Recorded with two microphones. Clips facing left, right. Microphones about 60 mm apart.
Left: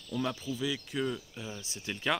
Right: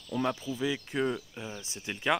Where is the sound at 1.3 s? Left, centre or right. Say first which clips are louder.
Right 1 dB; centre.